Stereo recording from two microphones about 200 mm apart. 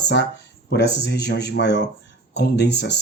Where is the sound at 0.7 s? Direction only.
55° left (ahead or behind).